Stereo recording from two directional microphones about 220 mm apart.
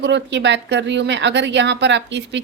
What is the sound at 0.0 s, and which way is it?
A woman's voice, 50° right (ahead or behind).